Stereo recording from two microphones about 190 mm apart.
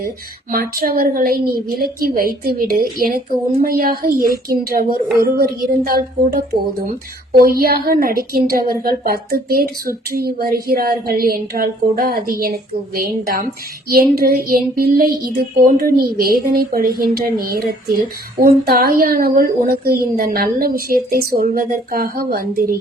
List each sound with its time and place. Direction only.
0.5 s speech: 50° right (ahead or behind)